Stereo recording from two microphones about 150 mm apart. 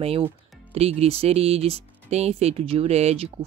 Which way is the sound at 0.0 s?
40° right (ahead or behind).